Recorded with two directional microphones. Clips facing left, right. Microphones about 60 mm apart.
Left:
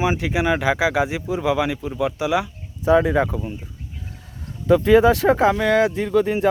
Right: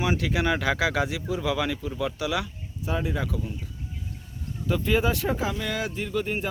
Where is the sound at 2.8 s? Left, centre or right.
Left.